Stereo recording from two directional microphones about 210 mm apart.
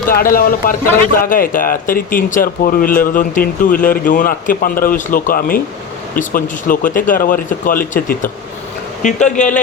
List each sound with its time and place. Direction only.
0.1 s speech: 45° left (ahead or behind)